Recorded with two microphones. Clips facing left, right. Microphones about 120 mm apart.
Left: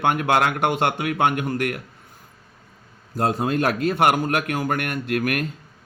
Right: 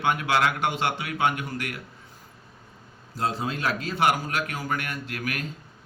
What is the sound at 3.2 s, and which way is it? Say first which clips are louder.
Speech: left 6 dB; 55° left (ahead or behind).